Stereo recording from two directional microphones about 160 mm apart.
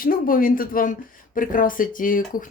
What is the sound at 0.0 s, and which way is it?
Speech, 65° left (ahead or behind).